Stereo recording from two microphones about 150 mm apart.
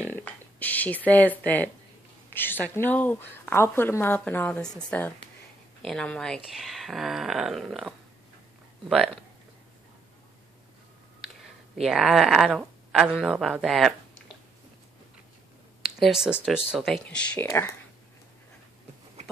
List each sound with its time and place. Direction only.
0.1 s a woman's voice: 10° left (ahead or behind)
11.8 s speech: 5° right (ahead or behind)
16.0 s a woman's voice: 5° right (ahead or behind); by 17.7 s 15° left (ahead or behind)